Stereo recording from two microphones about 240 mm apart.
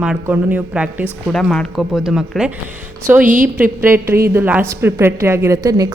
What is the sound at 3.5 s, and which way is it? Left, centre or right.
A woman's voice, centre.